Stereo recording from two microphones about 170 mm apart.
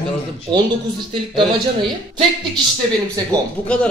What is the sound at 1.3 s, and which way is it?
Speech, 30° right (ahead or behind).